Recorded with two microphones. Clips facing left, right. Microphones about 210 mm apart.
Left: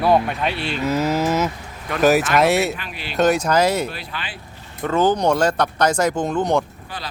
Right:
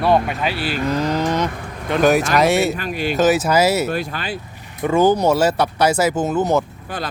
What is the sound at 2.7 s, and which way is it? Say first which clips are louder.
Speech: right 9 dB; 45° right (ahead or behind).